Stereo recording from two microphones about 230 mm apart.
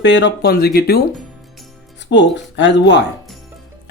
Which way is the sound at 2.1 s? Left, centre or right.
Left.